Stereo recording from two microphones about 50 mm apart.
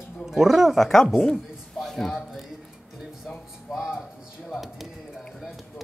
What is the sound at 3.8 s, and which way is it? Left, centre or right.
Speech, centre.